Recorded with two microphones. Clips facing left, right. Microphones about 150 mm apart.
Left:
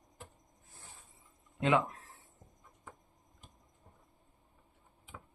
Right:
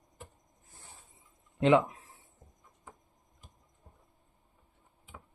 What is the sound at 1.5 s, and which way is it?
Speech, 20° right (ahead or behind).